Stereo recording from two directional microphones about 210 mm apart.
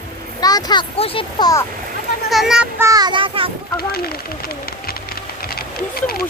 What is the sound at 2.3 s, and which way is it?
A child's voice, centre (ahead or behind).